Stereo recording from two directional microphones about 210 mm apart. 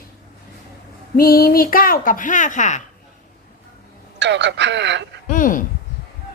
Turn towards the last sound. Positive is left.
turn(degrees=40)  # may be behind; listen again after turning